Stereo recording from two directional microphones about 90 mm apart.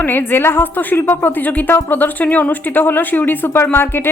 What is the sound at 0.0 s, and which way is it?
A woman's voice, 25° left (ahead or behind).